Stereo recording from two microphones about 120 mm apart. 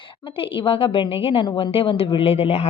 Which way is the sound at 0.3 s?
50° left (ahead or behind).